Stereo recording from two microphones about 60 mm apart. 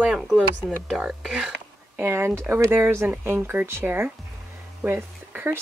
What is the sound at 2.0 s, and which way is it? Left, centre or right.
Speech, right.